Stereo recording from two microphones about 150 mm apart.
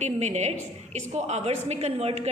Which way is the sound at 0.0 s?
50° right (ahead or behind).